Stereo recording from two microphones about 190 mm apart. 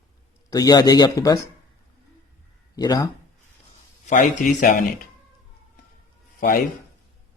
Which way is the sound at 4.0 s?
45° left (ahead or behind).